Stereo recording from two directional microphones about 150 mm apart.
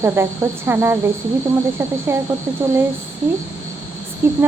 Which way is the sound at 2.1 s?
15° right (ahead or behind).